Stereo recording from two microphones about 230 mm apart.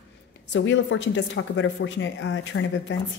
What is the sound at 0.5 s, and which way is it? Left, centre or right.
Speech, left.